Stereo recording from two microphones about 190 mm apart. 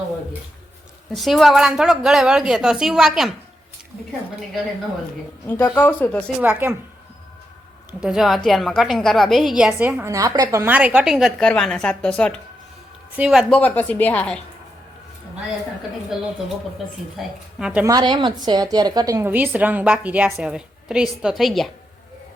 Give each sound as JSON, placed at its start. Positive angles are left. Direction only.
{"t": 1.1, "sound": "a woman's voice", "side_deg": 0}
{"t": 5.5, "sound": "speech", "side_deg": 10}
{"t": 6.4, "sound": "a woman's voice", "side_deg": -10}
{"t": 7.9, "sound": "a woman's voice", "side_deg": -5}
{"t": 13.6, "sound": "speech", "side_deg": 10}
{"t": 16.1, "sound": "a woman's voice", "side_deg": 0}
{"t": 17.8, "sound": "a woman's voice", "side_deg": -20}